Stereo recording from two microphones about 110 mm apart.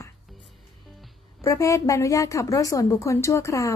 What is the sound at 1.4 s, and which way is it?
A woman's voice, 30° left (ahead or behind).